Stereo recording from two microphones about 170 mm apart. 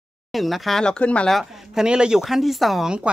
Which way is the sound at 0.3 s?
Centre (ahead or behind).